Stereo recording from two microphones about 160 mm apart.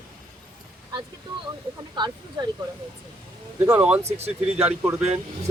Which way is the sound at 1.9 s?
30° right (ahead or behind).